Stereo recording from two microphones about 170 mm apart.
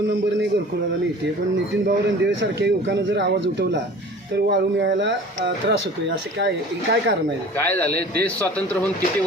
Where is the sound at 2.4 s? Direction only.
90° right.